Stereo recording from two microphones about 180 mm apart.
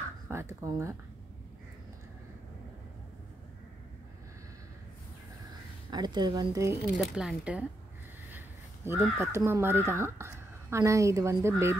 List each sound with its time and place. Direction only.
0.3 s a woman's voice: 15° right (ahead or behind)
5.9 s speech: 25° right (ahead or behind)
7.0 s speech: 5° right (ahead or behind)
8.8 s a woman's voice: 15° right (ahead or behind)